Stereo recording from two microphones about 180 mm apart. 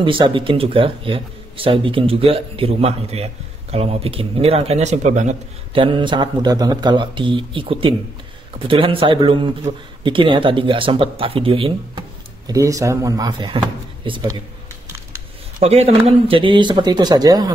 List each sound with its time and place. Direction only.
0.0 s a man's voice: 30° right (ahead or behind)
5.8 s a man's voice: 25° right (ahead or behind)
12.4 s a man's voice: 20° right (ahead or behind)
15.6 s a man's voice: 35° right (ahead or behind)